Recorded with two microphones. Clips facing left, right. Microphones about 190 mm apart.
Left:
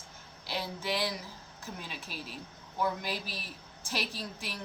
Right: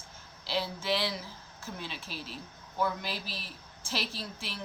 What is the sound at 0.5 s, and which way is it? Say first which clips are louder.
A woman's voice: right 3 dB; 15° left (ahead or behind).